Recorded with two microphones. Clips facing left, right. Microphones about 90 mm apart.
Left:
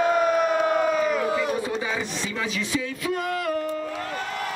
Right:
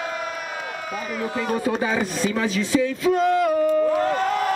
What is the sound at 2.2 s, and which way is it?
Speech, 35° right (ahead or behind).